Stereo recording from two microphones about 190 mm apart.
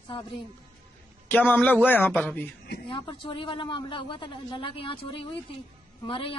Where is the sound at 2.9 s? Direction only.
25° left (ahead or behind).